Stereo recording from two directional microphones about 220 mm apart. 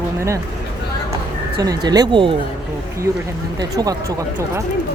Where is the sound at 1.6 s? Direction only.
20° right (ahead or behind).